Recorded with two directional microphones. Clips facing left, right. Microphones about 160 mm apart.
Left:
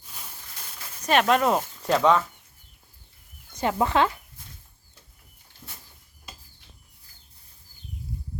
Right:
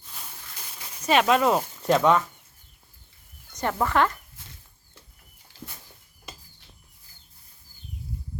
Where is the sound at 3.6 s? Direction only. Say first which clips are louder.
Left 1 dB; 15° left (ahead or behind).